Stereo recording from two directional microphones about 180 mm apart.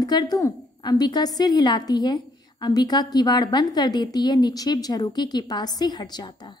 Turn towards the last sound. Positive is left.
turn(degrees=25)  # may be behind; listen again after turning